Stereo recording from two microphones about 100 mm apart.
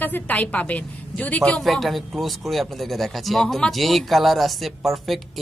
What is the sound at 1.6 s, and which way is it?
A woman's voice, centre (ahead or behind).